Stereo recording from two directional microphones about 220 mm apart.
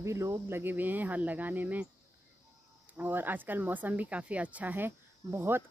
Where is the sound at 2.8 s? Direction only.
10° right (ahead or behind).